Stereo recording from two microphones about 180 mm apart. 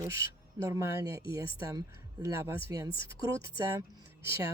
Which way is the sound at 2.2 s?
15° right (ahead or behind).